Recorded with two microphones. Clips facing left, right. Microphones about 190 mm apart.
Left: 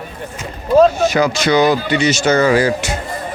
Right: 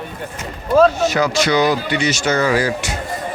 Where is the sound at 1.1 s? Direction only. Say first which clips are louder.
Left 2 dB; 20° left (ahead or behind).